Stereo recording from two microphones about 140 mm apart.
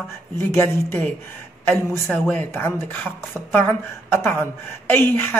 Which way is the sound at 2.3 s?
15° left (ahead or behind).